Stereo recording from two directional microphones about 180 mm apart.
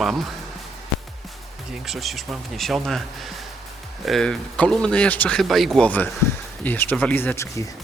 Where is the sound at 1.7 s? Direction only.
Centre (ahead or behind).